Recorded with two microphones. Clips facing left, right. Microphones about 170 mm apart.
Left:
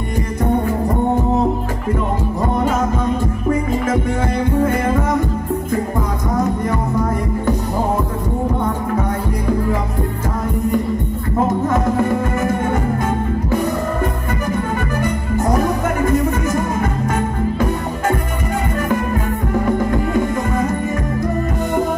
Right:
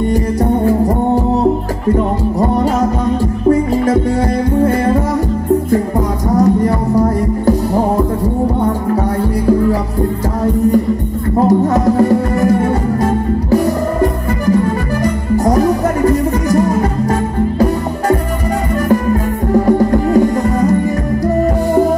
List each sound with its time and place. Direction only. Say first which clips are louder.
0.1 s music: right 5 dB; 35° right (ahead or behind)
3.4 s music: right 7 dB; 35° right (ahead or behind)
6.3 s music: right 8 dB; 35° right (ahead or behind)
11.3 s music: right 6 dB; 35° right (ahead or behind)
15.3 s music: right 6 dB; 35° right (ahead or behind)
19.6 s music: right 5 dB; 35° right (ahead or behind)